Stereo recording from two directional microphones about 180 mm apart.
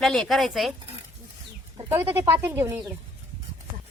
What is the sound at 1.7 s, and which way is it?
Speech, 15° right (ahead or behind).